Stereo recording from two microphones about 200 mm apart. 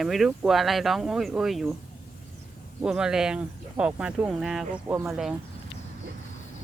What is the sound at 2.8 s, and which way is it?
Speech, 5° right (ahead or behind).